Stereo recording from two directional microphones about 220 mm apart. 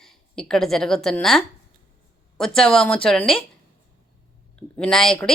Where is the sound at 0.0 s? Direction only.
Centre (ahead or behind).